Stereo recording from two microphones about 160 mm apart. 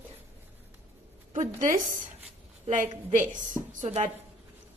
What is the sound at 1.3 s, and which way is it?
Speech, 50° right (ahead or behind).